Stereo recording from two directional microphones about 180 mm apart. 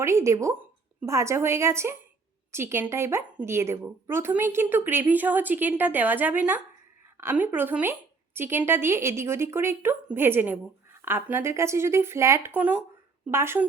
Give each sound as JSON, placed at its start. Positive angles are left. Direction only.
{"t": 0.0, "sound": "a woman's voice", "side_deg": -15}